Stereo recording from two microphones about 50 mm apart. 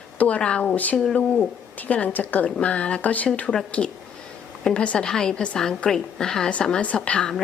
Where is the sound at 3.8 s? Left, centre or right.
Centre.